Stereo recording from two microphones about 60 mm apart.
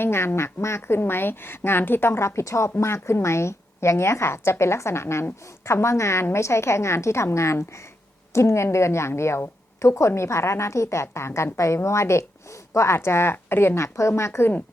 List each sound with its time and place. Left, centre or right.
0.0 s speech: left
13.7 s speech: left